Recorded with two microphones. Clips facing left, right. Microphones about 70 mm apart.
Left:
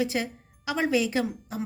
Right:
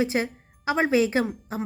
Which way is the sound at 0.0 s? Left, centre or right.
Right.